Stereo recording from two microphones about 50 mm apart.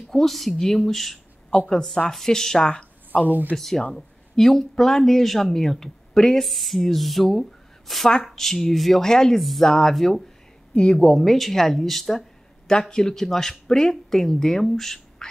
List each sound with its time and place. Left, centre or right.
0.1 s speech: centre
3.3 s speech: right
3.5 s speech: centre
12.6 s speech: centre